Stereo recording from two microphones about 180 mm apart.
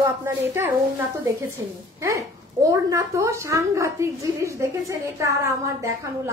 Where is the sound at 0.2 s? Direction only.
15° right (ahead or behind).